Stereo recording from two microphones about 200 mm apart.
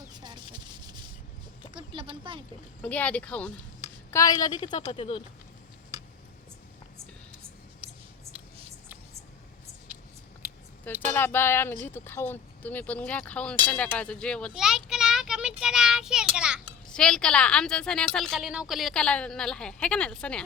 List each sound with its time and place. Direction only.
0.1 s a sound: 20° right (ahead or behind)
2.3 s speech: 25° right (ahead or behind)
2.8 s speech: 5° left (ahead or behind)
4.1 s a woman's voice: 15° left (ahead or behind)
11.1 s a woman's voice: 10° left (ahead or behind)